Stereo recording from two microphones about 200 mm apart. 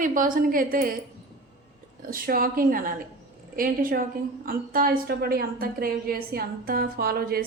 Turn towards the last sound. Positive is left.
turn(degrees=-50)  # may be behind; listen again after turning